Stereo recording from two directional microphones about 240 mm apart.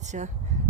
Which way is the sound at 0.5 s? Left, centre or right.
Right.